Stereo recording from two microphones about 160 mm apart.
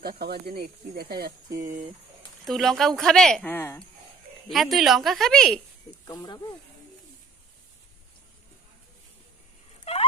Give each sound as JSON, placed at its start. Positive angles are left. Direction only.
{"t": 0.0, "sound": "speech", "side_deg": -75}
{"t": 2.5, "sound": "speech", "side_deg": 0}
{"t": 4.4, "sound": "speech", "side_deg": 0}
{"t": 6.1, "sound": "speech", "side_deg": 25}
{"t": 9.8, "sound": "dog", "side_deg": 35}